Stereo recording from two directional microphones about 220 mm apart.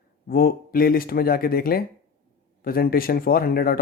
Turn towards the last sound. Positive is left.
turn(degrees=40)  # may be behind; listen again after turning